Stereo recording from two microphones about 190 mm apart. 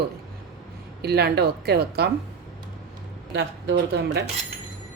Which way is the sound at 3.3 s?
60° right (ahead or behind).